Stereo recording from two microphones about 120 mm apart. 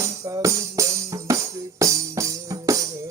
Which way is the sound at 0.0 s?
30° right (ahead or behind).